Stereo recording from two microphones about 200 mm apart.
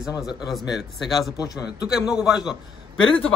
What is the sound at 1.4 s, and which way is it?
Speech, 20° left (ahead or behind).